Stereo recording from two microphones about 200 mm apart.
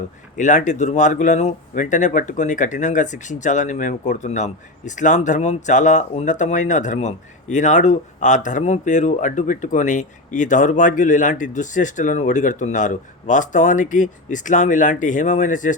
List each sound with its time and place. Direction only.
0.3 s speech: 40° left (ahead or behind)